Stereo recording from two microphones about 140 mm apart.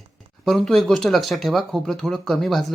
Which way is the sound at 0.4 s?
5° left (ahead or behind).